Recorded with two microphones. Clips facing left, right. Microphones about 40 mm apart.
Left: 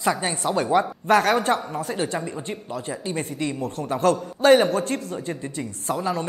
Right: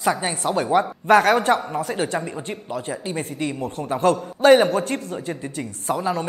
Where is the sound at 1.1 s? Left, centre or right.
Right.